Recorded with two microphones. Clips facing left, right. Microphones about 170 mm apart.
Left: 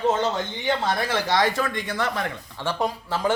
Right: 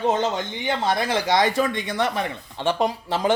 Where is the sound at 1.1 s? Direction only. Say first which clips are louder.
Right 2 dB; 15° right (ahead or behind).